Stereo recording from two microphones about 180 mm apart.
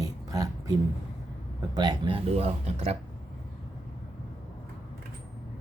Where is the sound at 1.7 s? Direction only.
25° right (ahead or behind).